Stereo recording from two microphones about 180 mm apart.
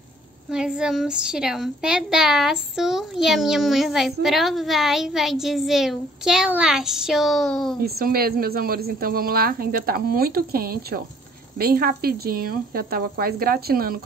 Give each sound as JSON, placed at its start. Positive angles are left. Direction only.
{"t": 0.5, "sound": "a woman's voice", "side_deg": -5}
{"t": 7.8, "sound": "speech", "side_deg": -55}